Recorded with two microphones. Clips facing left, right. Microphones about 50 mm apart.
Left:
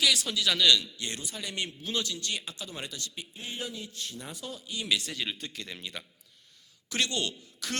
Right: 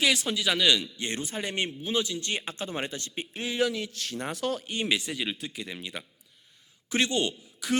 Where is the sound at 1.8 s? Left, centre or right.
Centre.